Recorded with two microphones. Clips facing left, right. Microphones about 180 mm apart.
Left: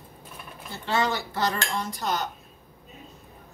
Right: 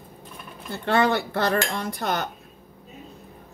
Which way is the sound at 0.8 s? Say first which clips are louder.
Right 5 dB; 60° right (ahead or behind).